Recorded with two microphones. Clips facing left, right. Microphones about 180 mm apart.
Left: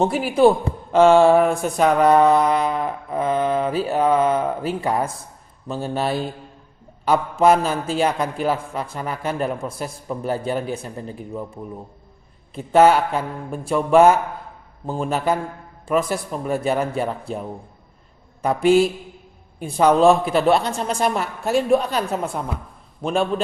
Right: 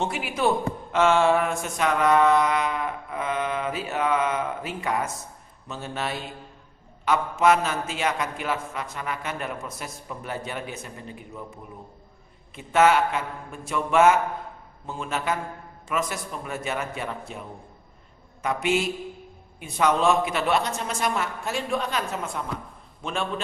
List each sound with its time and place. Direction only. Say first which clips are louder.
0.0 s a man's voice: left 10 dB; 35° left (ahead or behind)
18.4 s a man's voice: left 9 dB; 35° left (ahead or behind)